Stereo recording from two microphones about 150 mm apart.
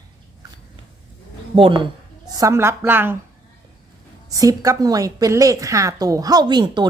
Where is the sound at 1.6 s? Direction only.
35° right (ahead or behind).